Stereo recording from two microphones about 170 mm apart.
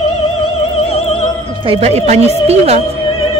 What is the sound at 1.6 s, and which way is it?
Speech, 40° right (ahead or behind).